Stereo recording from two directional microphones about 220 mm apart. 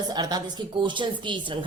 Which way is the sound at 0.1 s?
20° right (ahead or behind).